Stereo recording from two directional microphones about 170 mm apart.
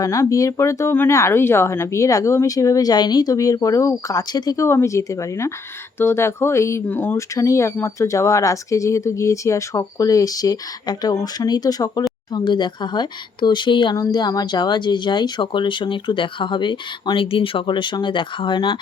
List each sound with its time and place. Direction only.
0.0 s speech: 20° left (ahead or behind)